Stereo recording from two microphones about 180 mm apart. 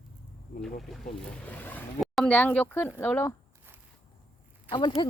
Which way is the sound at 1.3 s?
10° left (ahead or behind).